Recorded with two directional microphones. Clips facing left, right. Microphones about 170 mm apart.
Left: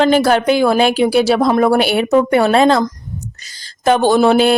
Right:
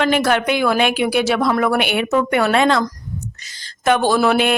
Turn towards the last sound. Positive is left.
turn(degrees=30)  # may be behind; listen again after turning